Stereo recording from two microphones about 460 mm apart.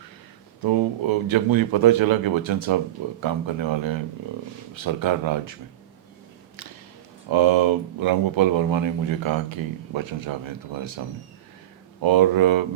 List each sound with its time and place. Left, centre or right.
0.6 s speech: right
7.3 s speech: right
12.0 s speech: right